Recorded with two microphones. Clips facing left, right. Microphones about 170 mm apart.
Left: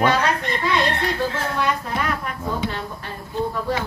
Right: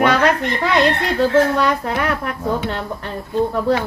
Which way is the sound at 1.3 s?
75° right (ahead or behind).